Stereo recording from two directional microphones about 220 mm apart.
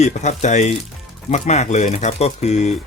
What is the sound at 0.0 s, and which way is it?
Speech, 30° left (ahead or behind).